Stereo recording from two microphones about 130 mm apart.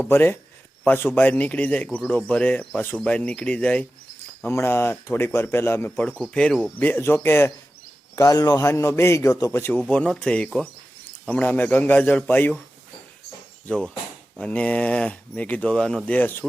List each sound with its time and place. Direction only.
0.0 s speech: 15° left (ahead or behind)
14.3 s speech: 10° left (ahead or behind)